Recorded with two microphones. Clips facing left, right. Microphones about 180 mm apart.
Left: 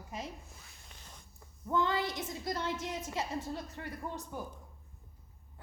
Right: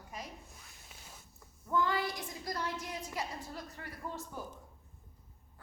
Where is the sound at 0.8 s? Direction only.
5° right (ahead or behind).